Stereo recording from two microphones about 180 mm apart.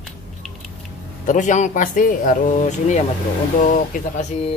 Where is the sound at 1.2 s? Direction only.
45° left (ahead or behind).